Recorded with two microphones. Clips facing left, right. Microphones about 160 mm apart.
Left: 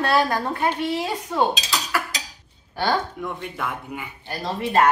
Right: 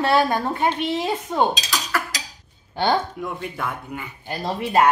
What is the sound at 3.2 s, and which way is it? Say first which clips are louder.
Speech: right 1 dB; centre (ahead or behind).